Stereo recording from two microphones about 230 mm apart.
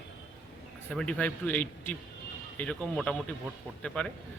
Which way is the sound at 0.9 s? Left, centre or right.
Centre.